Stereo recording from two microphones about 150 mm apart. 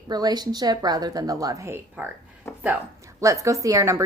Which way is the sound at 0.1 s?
25° right (ahead or behind).